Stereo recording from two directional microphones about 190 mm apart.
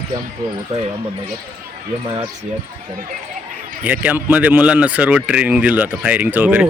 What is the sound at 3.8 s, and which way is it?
Speech, 10° right (ahead or behind).